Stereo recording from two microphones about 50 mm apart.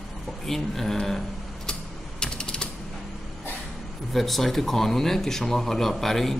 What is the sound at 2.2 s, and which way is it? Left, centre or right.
Typing, centre.